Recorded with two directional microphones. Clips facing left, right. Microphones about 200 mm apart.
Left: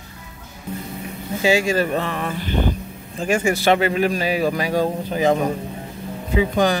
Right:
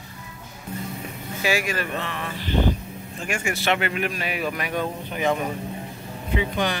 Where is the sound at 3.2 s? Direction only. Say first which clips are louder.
Left 8 dB; 35° left (ahead or behind).